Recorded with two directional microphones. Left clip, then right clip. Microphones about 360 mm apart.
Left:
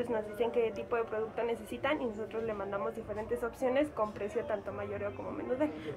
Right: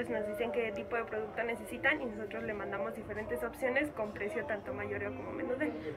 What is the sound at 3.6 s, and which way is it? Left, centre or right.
Speech, left.